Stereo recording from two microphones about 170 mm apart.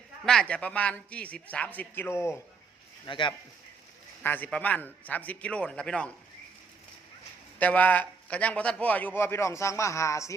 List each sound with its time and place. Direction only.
0.3 s a man's voice: 5° left (ahead or behind)
3.1 s speech: 30° left (ahead or behind)
4.2 s a man's voice: 10° left (ahead or behind)
7.6 s a man's voice: 10° left (ahead or behind)